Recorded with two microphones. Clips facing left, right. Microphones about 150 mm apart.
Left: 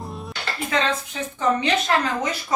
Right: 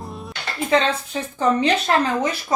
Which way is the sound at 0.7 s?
30° right (ahead or behind).